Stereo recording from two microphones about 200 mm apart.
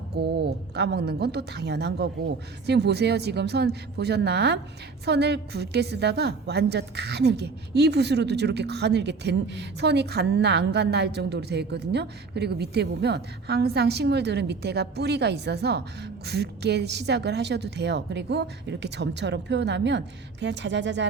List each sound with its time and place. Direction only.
0.2 s a woman's voice: 55° right (ahead or behind)